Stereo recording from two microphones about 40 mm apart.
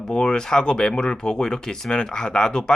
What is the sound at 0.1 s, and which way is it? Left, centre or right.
Speech, left.